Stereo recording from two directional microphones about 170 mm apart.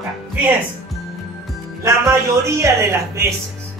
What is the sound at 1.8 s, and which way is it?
Speech, 15° right (ahead or behind).